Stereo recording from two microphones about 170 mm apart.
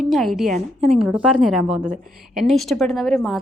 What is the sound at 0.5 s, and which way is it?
Speech, 40° right (ahead or behind).